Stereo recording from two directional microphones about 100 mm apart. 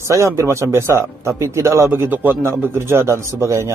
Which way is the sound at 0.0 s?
30° right (ahead or behind).